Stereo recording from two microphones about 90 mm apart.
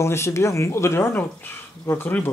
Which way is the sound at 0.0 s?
30° left (ahead or behind).